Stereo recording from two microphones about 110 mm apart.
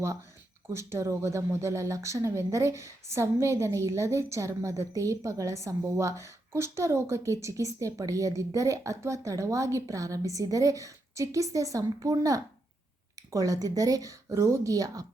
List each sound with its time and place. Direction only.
0.7 s a woman's voice: 25° right (ahead or behind)